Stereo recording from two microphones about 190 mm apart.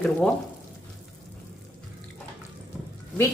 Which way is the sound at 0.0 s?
5° left (ahead or behind).